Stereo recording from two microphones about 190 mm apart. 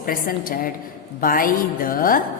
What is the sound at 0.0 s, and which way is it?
A woman's voice, 50° left (ahead or behind).